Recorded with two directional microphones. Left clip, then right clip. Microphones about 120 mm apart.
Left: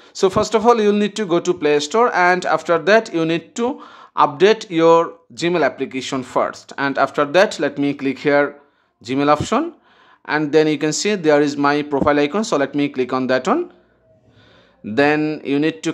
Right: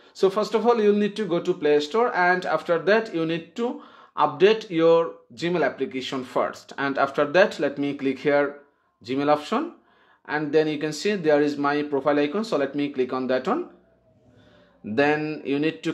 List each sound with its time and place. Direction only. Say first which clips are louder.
0.1 s speech: left 5 dB; 40° left (ahead or behind)
15.0 s speech: left 6 dB; 30° left (ahead or behind)